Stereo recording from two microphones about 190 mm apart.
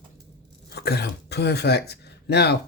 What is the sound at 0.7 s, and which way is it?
Speech, 55° left (ahead or behind).